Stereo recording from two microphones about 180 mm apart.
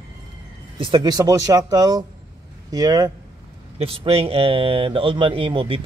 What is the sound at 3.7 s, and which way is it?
Speech, 35° right (ahead or behind).